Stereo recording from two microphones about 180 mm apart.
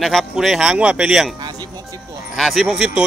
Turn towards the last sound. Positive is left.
turn(degrees=-5)  # may be behind; listen again after turning